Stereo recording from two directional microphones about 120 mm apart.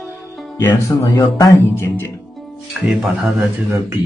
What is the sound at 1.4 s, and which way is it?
Music, 25° left (ahead or behind).